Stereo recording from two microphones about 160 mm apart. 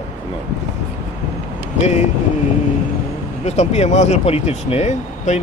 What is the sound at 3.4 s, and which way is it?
Speech, 45° left (ahead or behind).